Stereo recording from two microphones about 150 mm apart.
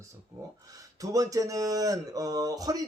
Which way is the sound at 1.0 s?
20° right (ahead or behind).